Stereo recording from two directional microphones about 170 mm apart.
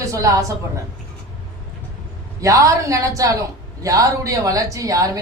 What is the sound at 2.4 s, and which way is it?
A woman's voice, 20° right (ahead or behind).